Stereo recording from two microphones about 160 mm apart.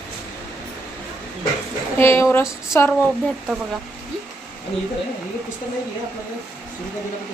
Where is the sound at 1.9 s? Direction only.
15° left (ahead or behind).